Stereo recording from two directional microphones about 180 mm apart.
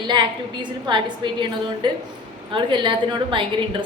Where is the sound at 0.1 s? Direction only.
25° right (ahead or behind).